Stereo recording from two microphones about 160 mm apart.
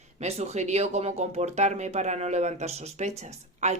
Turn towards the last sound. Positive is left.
turn(degrees=-45)  # may be behind; listen again after turning